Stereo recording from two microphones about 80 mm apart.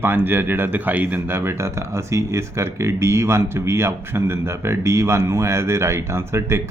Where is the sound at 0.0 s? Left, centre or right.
Right.